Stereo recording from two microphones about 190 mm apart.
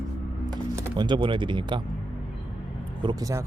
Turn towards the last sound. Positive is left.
turn(degrees=-15)  # may be behind; listen again after turning